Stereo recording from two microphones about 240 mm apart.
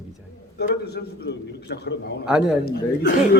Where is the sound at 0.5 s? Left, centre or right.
Left.